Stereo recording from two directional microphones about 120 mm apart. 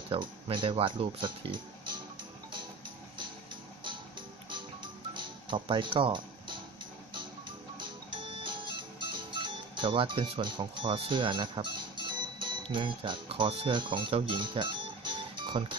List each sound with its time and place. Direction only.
0.1 s speech: 45° right (ahead or behind)
5.1 s music: 40° right (ahead or behind)
7.7 s music: 40° right (ahead or behind)